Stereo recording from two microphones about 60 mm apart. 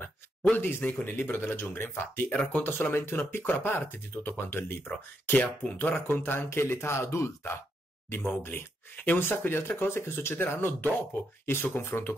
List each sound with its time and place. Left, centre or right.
0.0 s a sound: left
1.0 s speech: left
2.2 s speech: centre
2.6 s speech: left
5.3 s speech: left